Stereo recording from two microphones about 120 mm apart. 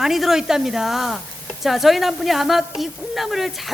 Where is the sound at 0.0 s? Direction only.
Centre (ahead or behind).